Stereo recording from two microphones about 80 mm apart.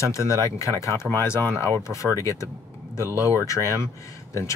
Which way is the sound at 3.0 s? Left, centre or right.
Right.